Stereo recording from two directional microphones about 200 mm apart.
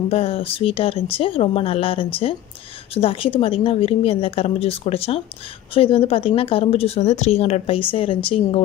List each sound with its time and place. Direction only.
0.1 s a woman's voice: 30° left (ahead or behind)